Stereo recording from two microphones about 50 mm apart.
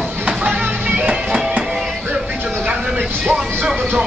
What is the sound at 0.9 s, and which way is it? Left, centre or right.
Music, right.